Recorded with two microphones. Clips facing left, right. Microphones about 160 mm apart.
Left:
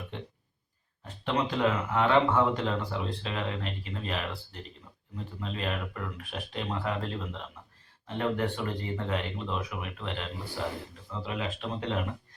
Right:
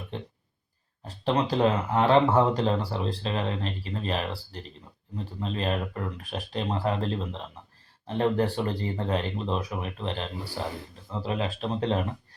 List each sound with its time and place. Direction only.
1.0 s speech: 35° right (ahead or behind)